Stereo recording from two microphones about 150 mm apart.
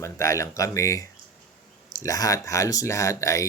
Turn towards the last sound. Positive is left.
turn(degrees=20)  # may be behind; listen again after turning